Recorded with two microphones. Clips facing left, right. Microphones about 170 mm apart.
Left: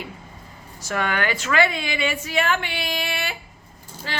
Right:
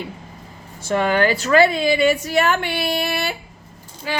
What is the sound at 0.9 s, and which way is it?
A woman's voice, 30° right (ahead or behind).